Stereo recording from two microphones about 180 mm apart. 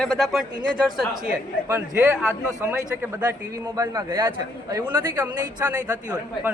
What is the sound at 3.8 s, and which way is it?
Speech, 20° right (ahead or behind).